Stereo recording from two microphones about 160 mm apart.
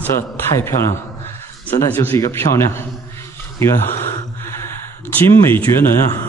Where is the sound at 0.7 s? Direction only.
55° left (ahead or behind).